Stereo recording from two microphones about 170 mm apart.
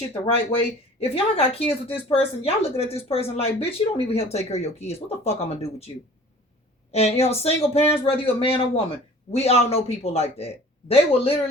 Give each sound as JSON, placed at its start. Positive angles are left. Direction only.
{"t": 0.5, "sound": "speech", "side_deg": 35}
{"t": 6.9, "sound": "speech", "side_deg": 40}